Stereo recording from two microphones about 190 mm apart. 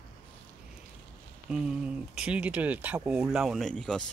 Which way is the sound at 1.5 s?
5° right (ahead or behind).